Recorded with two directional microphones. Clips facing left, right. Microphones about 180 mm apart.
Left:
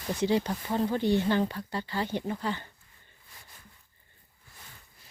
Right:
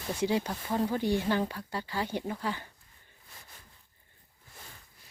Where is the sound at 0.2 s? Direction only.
10° right (ahead or behind).